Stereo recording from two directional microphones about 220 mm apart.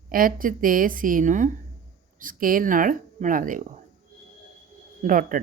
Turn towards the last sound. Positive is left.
turn(degrees=-40)  # may be behind; listen again after turning